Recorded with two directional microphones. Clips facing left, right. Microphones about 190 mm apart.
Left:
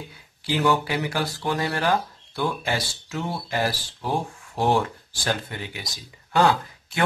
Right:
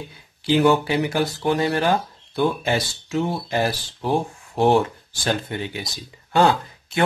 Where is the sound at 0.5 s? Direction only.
25° right (ahead or behind).